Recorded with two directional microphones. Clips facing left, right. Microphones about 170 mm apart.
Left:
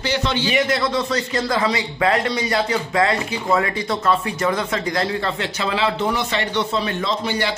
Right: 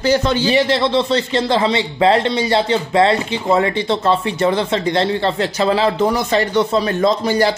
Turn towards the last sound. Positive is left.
turn(degrees=-40)  # may be behind; listen again after turning